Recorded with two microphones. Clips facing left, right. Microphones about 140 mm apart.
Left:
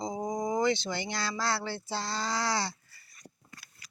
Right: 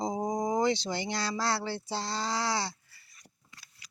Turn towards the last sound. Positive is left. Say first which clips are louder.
# left 4 dB
turn(degrees=50)  # may be behind; listen again after turning